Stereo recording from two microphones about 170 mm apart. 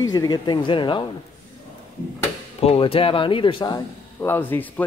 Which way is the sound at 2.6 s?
35° left (ahead or behind).